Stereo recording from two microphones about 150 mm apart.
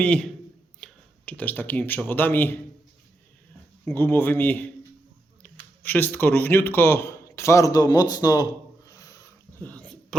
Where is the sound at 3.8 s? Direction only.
15° left (ahead or behind).